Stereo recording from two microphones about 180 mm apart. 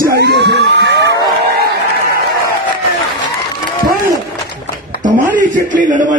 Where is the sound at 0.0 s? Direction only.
60° right (ahead or behind).